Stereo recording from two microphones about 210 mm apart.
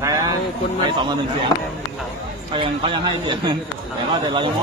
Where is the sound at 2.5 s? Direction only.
25° right (ahead or behind).